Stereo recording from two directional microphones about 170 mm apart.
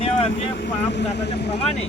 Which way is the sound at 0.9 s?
90° left.